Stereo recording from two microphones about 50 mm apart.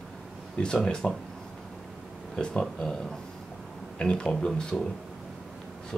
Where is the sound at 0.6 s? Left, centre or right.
Centre.